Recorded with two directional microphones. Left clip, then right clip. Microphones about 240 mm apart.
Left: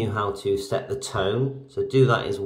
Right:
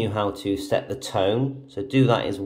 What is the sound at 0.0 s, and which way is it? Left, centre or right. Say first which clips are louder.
Speech: right 1 dB; centre.